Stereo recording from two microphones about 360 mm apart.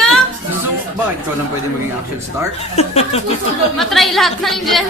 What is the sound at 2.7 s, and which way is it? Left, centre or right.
Speech, centre.